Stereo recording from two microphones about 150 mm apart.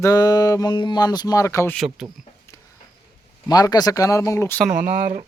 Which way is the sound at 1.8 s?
5° right (ahead or behind).